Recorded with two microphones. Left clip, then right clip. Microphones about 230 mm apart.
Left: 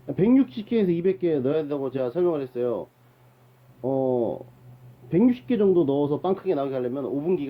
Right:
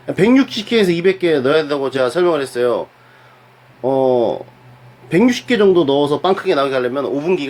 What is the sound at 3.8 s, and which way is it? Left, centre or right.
Speech, right.